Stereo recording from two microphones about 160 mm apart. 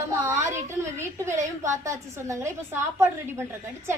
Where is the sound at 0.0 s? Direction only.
15° right (ahead or behind).